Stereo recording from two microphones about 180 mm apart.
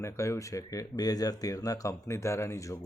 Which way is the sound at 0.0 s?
15° left (ahead or behind).